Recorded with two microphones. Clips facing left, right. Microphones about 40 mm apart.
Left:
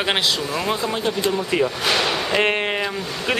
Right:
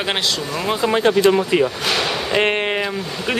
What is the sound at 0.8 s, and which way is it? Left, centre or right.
Speech, right.